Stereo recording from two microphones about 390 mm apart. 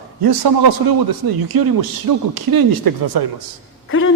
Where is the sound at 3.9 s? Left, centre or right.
Left.